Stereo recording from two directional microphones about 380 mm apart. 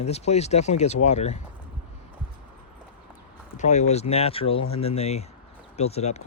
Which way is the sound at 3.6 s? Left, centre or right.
Centre.